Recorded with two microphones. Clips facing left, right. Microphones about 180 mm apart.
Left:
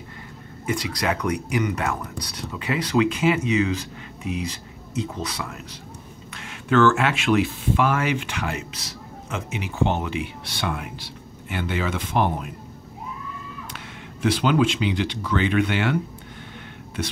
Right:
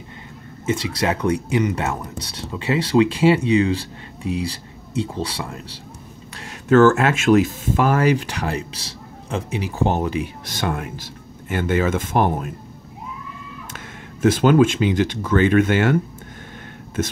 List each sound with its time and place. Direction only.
0.7 s speech: 25° right (ahead or behind); by 12.4 s 45° right (ahead or behind)
13.7 s speech: 45° right (ahead or behind)